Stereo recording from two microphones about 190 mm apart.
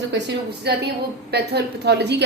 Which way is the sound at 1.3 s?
60° right (ahead or behind).